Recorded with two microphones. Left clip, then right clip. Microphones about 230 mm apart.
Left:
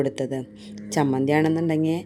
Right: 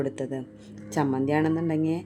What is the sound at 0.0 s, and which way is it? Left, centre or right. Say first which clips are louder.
Speech: left 5 dB; left.